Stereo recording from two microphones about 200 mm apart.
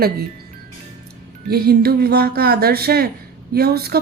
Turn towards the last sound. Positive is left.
turn(degrees=-50)  # may be behind; listen again after turning